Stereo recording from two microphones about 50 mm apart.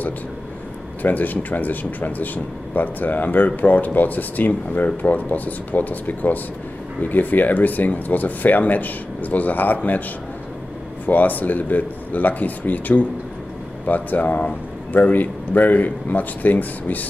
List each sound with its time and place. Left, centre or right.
1.0 s speech: left
11.1 s speech: left